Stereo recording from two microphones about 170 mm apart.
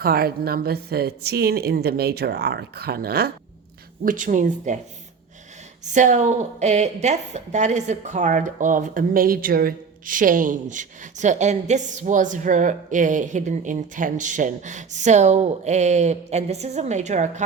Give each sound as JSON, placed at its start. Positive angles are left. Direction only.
{"t": 0.0, "sound": "speech", "side_deg": -60}
{"t": 4.0, "sound": "a woman's voice", "side_deg": -50}
{"t": 5.8, "sound": "a woman's voice", "side_deg": -45}